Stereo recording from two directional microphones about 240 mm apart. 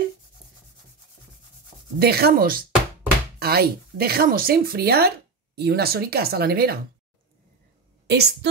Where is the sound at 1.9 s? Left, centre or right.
Right.